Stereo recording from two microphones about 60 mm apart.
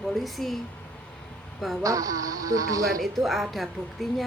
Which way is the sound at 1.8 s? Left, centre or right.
Right.